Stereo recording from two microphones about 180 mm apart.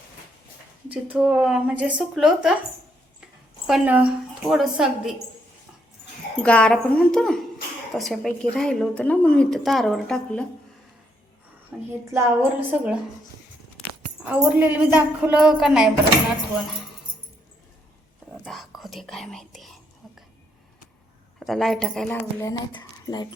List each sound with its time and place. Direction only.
0.9 s a woman's voice: 5° right (ahead or behind)
3.7 s a woman's voice: 5° right (ahead or behind)
6.3 s a woman's voice: 5° left (ahead or behind)
11.7 s a woman's voice: 5° right (ahead or behind)
14.3 s a woman's voice: 10° right (ahead or behind)
18.4 s whispering: centre (ahead or behind)
21.3 s a woman's voice: centre (ahead or behind); by 23.3 s 20° left (ahead or behind)